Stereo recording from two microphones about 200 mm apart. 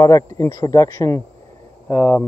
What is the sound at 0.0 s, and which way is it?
Speech, 20° left (ahead or behind).